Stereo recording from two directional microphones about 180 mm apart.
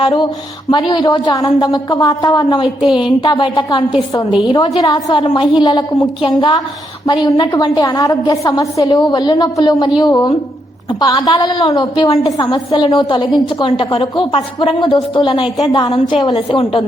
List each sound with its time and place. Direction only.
0.0 s a woman's voice: 25° left (ahead or behind)
7.0 s a woman's voice: 20° left (ahead or behind)